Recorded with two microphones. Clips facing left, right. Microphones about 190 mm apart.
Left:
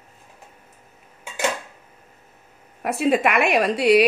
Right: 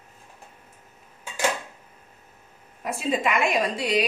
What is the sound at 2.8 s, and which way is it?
A woman's voice, 65° left (ahead or behind).